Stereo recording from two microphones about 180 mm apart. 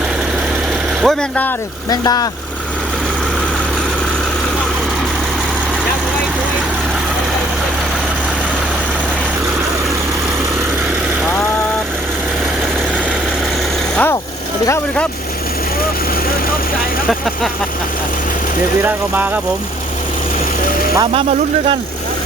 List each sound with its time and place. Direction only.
1.0 s speech: 10° left (ahead or behind)
1.9 s speech: 20° left (ahead or behind)
13.9 s speech: 10° left (ahead or behind)
17.1 s speech: centre (ahead or behind)
18.8 s speech: 10° right (ahead or behind)